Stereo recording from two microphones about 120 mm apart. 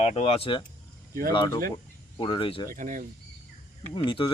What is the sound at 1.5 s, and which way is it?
Speech, 25° left (ahead or behind).